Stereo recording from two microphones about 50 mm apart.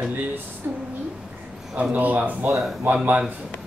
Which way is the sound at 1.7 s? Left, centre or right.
Right.